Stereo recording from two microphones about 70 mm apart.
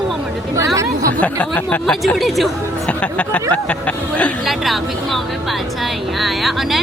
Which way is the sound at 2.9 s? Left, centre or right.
Centre.